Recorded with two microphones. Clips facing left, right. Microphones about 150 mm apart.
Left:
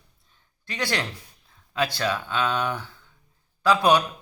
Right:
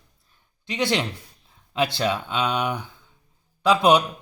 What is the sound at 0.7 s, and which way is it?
Speech, 20° right (ahead or behind).